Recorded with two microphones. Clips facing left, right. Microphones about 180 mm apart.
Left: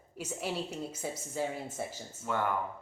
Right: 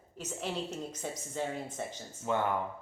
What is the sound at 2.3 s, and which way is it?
Speech, 20° right (ahead or behind).